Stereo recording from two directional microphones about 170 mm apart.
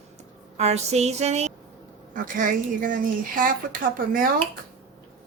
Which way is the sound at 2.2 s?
50° right (ahead or behind).